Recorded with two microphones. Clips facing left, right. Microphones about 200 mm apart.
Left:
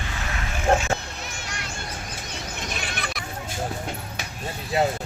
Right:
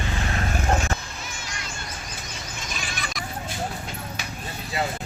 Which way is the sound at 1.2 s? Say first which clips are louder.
Left 2 dB; 60° left (ahead or behind).